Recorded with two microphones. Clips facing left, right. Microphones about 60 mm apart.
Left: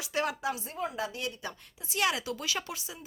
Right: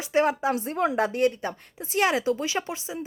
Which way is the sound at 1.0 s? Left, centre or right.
Right.